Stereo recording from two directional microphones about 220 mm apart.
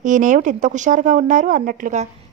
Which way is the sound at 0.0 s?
35° right (ahead or behind).